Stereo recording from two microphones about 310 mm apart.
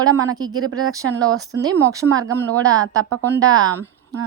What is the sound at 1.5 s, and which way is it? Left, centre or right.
Speech, right.